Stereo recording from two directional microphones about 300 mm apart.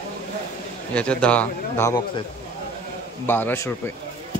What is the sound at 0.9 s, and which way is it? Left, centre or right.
A man's voice, centre.